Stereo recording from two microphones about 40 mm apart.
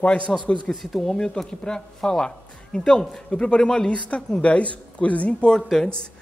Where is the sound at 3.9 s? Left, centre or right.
Left.